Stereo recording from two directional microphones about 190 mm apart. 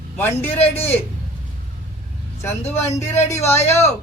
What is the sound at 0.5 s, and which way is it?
Speech, 30° left (ahead or behind).